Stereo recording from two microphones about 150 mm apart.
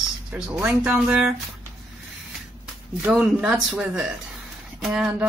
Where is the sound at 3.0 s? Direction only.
5° right (ahead or behind).